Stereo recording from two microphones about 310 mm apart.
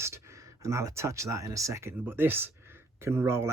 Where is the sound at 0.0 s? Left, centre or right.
Centre.